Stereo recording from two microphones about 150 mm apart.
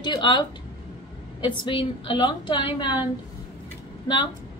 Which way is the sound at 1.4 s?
35° left (ahead or behind).